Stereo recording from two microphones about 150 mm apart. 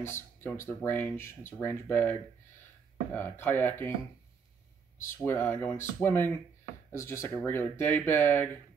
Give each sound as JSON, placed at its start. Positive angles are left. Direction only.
{"t": 0.0, "sound": "speech", "side_deg": 15}
{"t": 4.9, "sound": "speech", "side_deg": 20}